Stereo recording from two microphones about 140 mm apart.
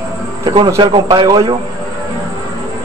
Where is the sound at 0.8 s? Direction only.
35° right (ahead or behind).